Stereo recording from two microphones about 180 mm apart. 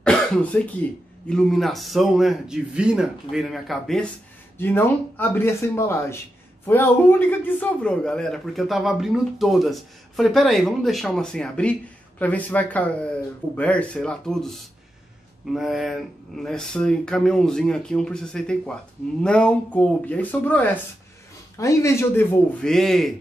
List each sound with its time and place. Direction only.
0.0 s cough: 5° left (ahead or behind)
1.3 s a man's voice: centre (ahead or behind)
22.6 s a man's voice: 5° left (ahead or behind)